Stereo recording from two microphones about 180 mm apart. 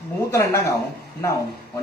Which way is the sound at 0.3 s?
15° left (ahead or behind).